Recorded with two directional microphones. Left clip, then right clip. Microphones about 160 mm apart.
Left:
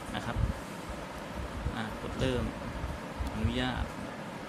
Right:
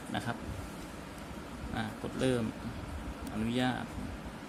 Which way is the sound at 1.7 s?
35° right (ahead or behind).